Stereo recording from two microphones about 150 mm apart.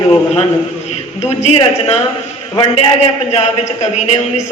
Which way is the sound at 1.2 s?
45° left (ahead or behind).